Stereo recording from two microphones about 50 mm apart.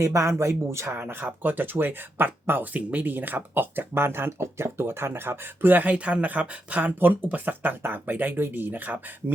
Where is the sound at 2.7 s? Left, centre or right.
Right.